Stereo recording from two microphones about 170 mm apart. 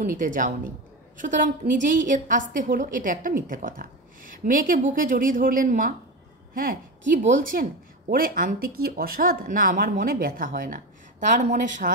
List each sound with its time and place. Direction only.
0.0 s a woman's voice: 50° right (ahead or behind)